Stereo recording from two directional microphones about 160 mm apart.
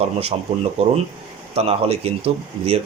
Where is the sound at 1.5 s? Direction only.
40° right (ahead or behind).